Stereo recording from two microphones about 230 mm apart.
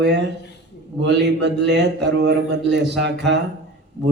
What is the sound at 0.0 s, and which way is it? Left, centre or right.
A man's voice, right.